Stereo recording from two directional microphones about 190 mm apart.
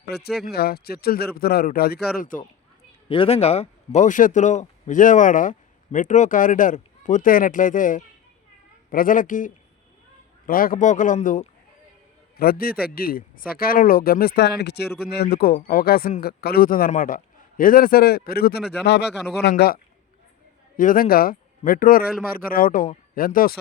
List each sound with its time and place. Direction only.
0.1 s speech: 60° left (ahead or behind)
3.1 s a man's voice: 30° left (ahead or behind); by 23.6 s 50° left (ahead or behind)